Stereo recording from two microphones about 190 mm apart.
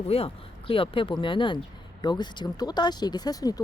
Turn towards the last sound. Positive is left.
turn(degrees=20)  # may be behind; listen again after turning